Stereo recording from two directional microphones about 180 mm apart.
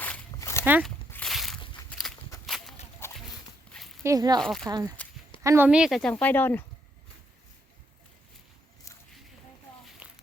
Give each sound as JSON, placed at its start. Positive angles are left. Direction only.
{"t": 0.0, "sound": "walk", "side_deg": 10}
{"t": 0.6, "sound": "speech", "side_deg": -10}
{"t": 0.9, "sound": "a sound", "side_deg": 5}
{"t": 1.9, "sound": "walk", "side_deg": 0}
{"t": 3.0, "sound": "a sound", "side_deg": 15}
{"t": 4.0, "sound": "speech", "side_deg": -20}
{"t": 4.4, "sound": "a woman's voice", "side_deg": 5}
{"t": 4.7, "sound": "a woman's voice", "side_deg": -20}
{"t": 10.0, "sound": "walk", "side_deg": -10}